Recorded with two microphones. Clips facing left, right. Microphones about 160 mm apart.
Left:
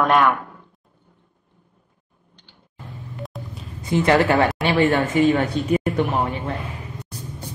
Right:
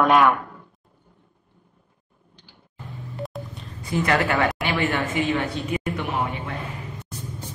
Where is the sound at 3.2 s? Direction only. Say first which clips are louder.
Right 3 dB; centre (ahead or behind).